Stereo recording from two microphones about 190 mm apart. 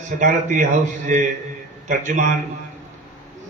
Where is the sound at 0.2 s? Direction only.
45° right (ahead or behind).